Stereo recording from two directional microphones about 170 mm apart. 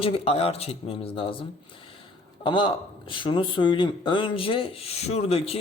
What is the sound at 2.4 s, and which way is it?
A man's voice, 30° left (ahead or behind).